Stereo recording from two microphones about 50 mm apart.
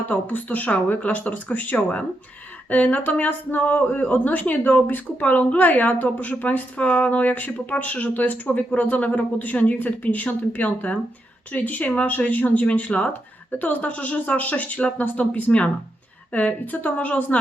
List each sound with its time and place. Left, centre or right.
0.1 s speech: left